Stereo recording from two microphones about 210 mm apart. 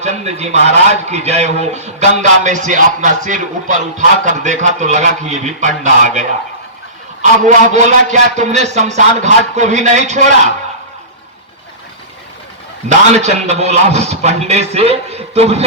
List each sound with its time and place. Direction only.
0.0 s a man's voice: 30° right (ahead or behind)
12.9 s a man's voice: 30° right (ahead or behind)